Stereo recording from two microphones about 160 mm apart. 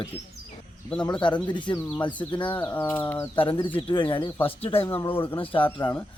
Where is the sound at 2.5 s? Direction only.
15° left (ahead or behind).